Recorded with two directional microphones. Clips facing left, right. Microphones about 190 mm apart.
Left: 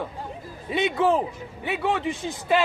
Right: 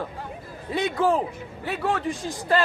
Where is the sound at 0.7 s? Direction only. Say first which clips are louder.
Left 1 dB; 20° left (ahead or behind).